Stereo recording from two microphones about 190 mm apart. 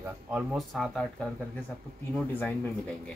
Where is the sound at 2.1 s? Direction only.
5° left (ahead or behind).